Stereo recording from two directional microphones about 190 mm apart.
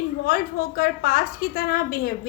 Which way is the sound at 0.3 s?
50° left (ahead or behind).